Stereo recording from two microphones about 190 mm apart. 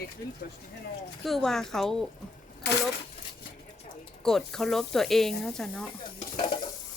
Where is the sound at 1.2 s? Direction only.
Centre (ahead or behind).